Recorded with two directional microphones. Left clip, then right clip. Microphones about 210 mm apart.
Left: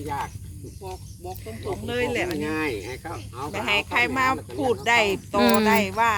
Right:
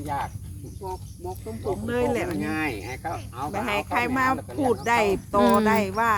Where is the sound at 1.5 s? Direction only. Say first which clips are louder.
Right 2 dB; 35° right (ahead or behind).